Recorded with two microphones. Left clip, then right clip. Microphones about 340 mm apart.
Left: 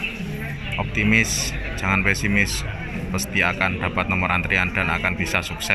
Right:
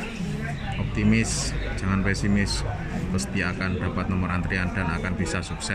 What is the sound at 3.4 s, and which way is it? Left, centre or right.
Speech, centre.